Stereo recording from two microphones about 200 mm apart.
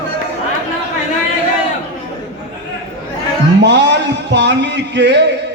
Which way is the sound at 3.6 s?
60° right (ahead or behind).